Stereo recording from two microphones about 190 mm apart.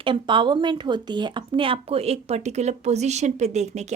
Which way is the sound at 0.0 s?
25° right (ahead or behind).